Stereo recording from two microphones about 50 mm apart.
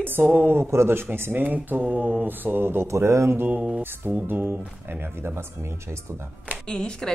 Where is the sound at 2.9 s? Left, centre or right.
Right.